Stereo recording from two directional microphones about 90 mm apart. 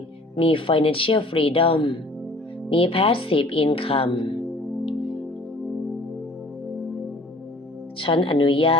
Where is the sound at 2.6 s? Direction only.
85° left.